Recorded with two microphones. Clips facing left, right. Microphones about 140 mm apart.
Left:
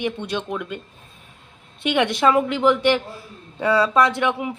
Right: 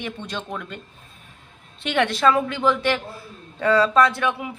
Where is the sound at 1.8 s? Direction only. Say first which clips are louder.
Left 1 dB; 10° left (ahead or behind).